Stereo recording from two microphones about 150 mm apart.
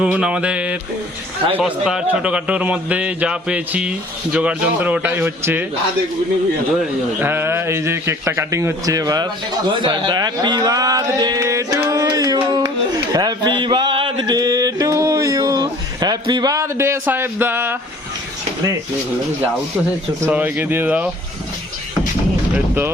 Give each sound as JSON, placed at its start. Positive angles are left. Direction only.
{"t": 0.0, "sound": "a man's voice", "side_deg": -5}
{"t": 7.2, "sound": "a man's voice", "side_deg": -15}
{"t": 13.1, "sound": "mantra", "side_deg": -30}
{"t": 20.3, "sound": "a man's voice", "side_deg": -10}
{"t": 22.5, "sound": "a man's voice", "side_deg": -15}